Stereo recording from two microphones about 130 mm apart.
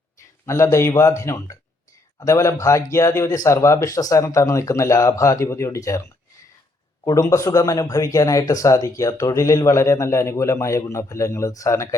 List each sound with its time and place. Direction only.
0.4 s speech: 20° left (ahead or behind)
7.0 s speech: 30° left (ahead or behind)